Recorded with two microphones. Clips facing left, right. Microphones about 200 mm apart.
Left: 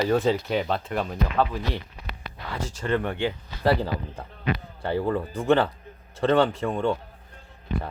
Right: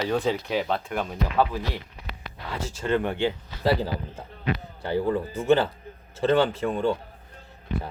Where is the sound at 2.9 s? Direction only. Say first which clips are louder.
Right 1 dB; 20° right (ahead or behind).